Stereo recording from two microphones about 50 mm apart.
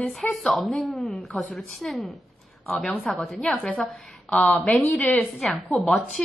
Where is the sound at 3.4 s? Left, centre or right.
Left.